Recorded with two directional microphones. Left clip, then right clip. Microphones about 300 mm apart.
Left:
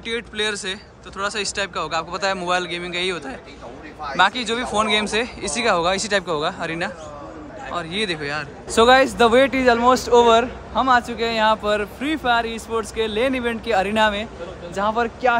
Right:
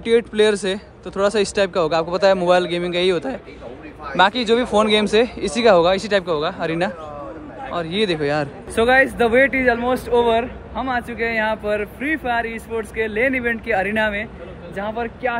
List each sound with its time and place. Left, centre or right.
0.0 s speech: centre
8.7 s speech: centre